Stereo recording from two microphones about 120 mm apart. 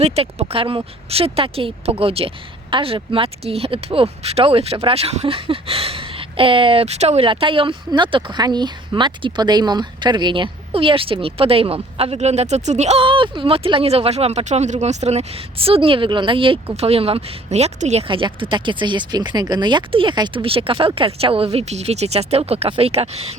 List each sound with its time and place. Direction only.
0.0 s a woman's voice: 55° right (ahead or behind)
7.3 s a woman's voice: 45° right (ahead or behind); by 13.0 s 70° right (ahead or behind)
13.0 s a woman's voice: 45° right (ahead or behind); by 18.0 s 65° right (ahead or behind)
18.1 s a woman's voice: 45° right (ahead or behind)